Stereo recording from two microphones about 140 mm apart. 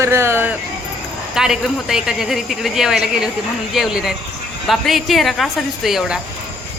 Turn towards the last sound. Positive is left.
turn(degrees=-5)  # may be behind; listen again after turning